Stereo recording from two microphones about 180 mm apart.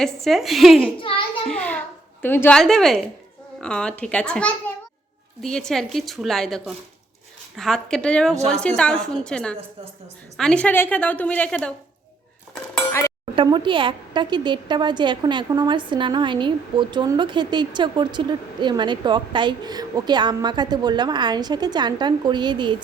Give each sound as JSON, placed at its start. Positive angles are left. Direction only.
{"t": 0.0, "sound": "a woman's voice", "side_deg": 0}
{"t": 0.8, "sound": "a child's voice", "side_deg": 30}
{"t": 1.5, "sound": "a child's voice", "side_deg": 5}
{"t": 13.3, "sound": "a woman's voice", "side_deg": -25}